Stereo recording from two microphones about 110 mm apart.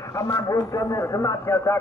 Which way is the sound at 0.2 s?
25° left (ahead or behind).